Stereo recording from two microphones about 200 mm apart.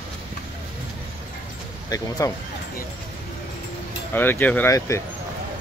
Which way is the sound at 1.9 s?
20° left (ahead or behind).